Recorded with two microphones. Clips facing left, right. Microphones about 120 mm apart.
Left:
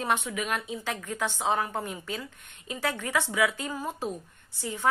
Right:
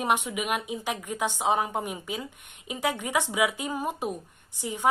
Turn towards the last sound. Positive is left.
turn(degrees=-15)  # may be behind; listen again after turning